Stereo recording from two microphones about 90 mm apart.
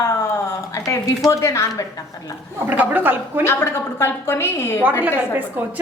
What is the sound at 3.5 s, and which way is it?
A woman's voice, 30° left (ahead or behind).